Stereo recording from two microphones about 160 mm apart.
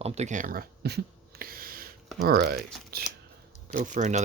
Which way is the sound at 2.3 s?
75° right (ahead or behind).